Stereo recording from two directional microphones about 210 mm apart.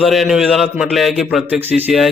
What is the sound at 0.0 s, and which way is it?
A man's voice, centre (ahead or behind).